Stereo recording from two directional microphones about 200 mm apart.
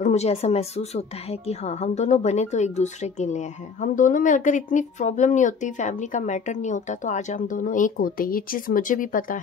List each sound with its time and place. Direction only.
0.0 s a woman's voice: 35° left (ahead or behind)